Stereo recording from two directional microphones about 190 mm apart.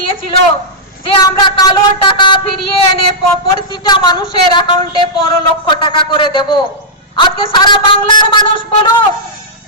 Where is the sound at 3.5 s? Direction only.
25° left (ahead or behind).